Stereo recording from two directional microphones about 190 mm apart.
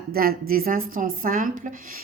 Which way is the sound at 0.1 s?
50° right (ahead or behind).